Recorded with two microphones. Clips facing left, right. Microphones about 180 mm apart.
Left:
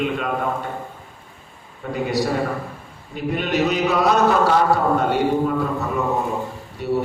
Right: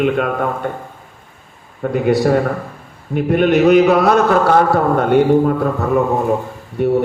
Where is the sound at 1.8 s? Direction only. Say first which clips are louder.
Right 8 dB; 55° right (ahead or behind).